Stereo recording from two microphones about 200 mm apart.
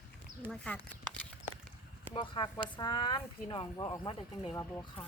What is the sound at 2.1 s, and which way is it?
Speech, 25° left (ahead or behind).